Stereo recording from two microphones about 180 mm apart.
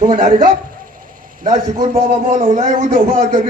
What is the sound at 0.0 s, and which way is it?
Speech, 45° right (ahead or behind).